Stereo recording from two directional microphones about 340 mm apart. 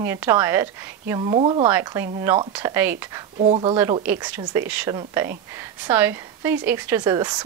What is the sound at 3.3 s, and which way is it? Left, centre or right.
Speech, centre.